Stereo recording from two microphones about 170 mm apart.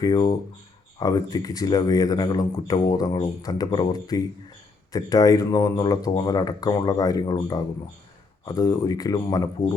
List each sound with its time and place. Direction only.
0.0 s speech: 20° left (ahead or behind)